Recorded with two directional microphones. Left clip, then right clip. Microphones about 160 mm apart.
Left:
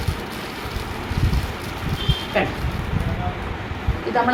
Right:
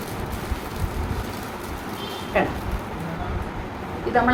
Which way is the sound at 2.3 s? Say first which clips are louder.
Even; 15° right (ahead or behind).